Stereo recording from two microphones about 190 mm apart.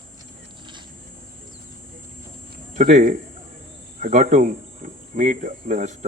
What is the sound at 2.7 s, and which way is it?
Speech, 45° right (ahead or behind).